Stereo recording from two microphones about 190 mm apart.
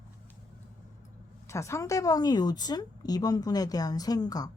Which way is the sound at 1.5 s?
15° left (ahead or behind).